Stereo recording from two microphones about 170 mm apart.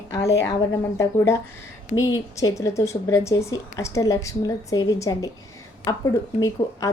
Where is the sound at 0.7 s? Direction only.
15° left (ahead or behind).